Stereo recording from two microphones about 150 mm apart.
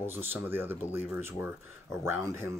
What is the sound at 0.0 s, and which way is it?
Speech, 15° right (ahead or behind).